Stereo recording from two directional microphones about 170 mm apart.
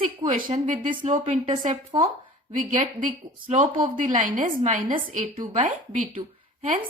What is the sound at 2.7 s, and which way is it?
A woman's voice, 45° right (ahead or behind).